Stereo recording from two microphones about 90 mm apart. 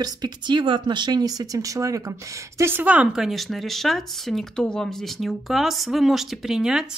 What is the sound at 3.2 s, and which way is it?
Speech, centre (ahead or behind).